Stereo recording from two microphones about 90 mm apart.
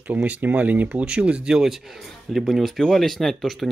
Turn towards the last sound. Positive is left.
turn(degrees=0)  # may be behind; listen again after turning